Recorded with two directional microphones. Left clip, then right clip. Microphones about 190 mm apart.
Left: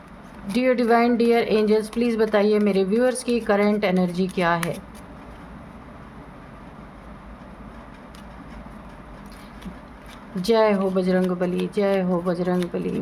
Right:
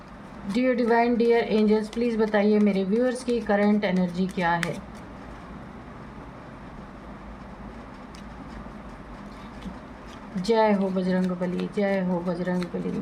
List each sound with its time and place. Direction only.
0.5 s speech: 40° left (ahead or behind)
10.4 s speech: 40° left (ahead or behind)